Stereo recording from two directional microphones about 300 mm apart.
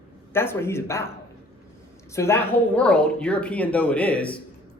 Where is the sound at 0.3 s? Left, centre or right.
Centre.